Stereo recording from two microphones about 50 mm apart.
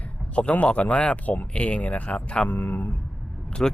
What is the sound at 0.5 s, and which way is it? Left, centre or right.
Speech, left.